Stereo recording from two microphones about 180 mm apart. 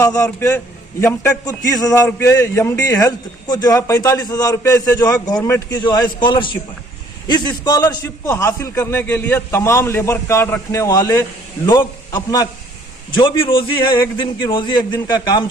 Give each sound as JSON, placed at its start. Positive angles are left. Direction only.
{"t": 0.0, "sound": "a man's voice", "side_deg": 20}